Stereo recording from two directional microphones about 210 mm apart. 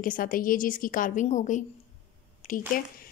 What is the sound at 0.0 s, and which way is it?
Speech, 40° left (ahead or behind).